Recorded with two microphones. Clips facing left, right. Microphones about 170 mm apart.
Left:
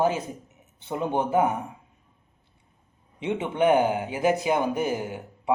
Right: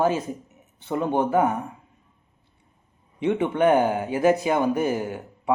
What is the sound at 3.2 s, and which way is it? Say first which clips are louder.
Speech: right 3 dB; 20° left (ahead or behind).